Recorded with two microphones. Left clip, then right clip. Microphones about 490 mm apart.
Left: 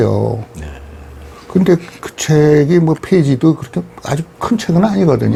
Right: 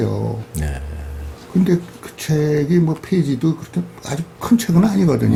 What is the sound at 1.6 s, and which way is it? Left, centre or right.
Speech, left.